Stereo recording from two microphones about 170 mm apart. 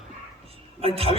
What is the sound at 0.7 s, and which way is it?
Speech, 35° right (ahead or behind).